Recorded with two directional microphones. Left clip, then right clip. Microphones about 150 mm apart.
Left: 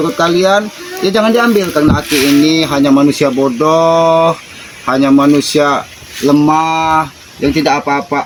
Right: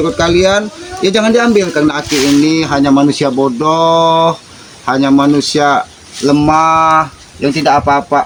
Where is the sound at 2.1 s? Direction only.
30° right (ahead or behind).